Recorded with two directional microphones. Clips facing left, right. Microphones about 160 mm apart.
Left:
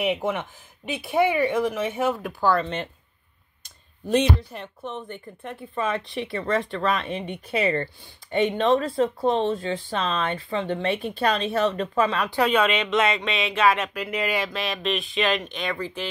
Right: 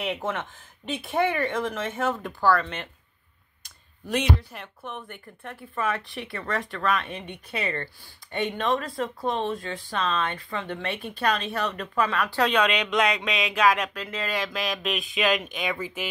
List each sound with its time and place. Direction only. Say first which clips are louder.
0.0 s speech: left 5 dB; 15° left (ahead or behind)
2.5 s speech: left 2 dB; 25° left (ahead or behind)
3.6 s a sound: left 5 dB; 25° left (ahead or behind)
4.5 s speech: left 4 dB; 25° left (ahead or behind)
12.4 s speech: left 2 dB; 10° left (ahead or behind); by 16.1 s 10° right (ahead or behind)